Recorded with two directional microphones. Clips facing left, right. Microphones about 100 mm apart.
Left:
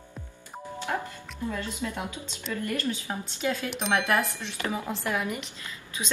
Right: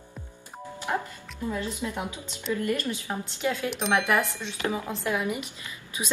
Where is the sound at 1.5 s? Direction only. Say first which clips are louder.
Right 3 dB; 15° right (ahead or behind).